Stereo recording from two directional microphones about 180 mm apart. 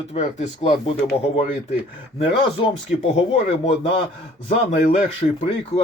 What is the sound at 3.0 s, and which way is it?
A man's voice, 35° left (ahead or behind).